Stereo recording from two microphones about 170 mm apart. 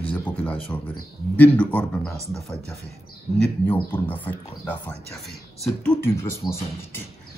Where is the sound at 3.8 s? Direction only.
10° left (ahead or behind).